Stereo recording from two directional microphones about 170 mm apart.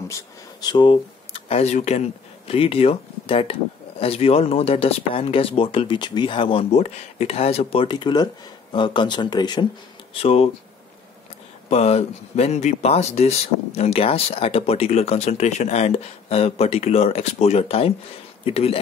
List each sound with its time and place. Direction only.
0.1 s speech: 25° left (ahead or behind)
10.1 s speech: 35° left (ahead or behind)
11.7 s speech: 35° left (ahead or behind)